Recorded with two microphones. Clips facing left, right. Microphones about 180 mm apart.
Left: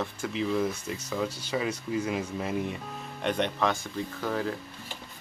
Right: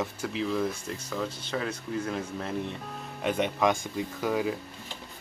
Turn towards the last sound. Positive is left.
turn(degrees=-10)  # may be behind; listen again after turning